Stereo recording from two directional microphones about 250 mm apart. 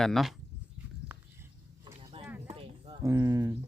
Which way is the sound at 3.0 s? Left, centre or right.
Centre.